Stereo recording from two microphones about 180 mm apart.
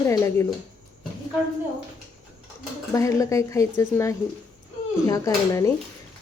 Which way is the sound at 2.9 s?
15° left (ahead or behind).